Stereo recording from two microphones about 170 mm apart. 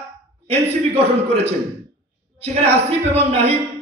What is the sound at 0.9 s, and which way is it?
A man's voice, 35° right (ahead or behind).